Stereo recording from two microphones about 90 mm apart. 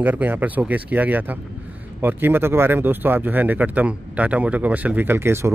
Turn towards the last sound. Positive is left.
turn(degrees=-30)  # may be behind; listen again after turning